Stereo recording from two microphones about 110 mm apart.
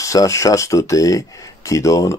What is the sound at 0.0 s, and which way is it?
Speech, 30° left (ahead or behind).